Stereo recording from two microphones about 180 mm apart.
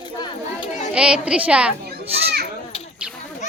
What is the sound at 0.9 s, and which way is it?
Speech, 5° right (ahead or behind).